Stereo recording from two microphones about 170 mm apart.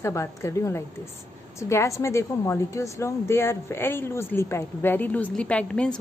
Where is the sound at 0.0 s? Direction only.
15° left (ahead or behind).